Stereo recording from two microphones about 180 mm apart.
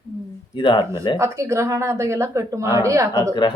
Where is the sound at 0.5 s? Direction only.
25° left (ahead or behind).